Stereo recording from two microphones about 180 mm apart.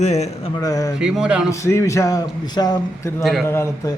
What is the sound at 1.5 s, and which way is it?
A man's voice, 15° left (ahead or behind).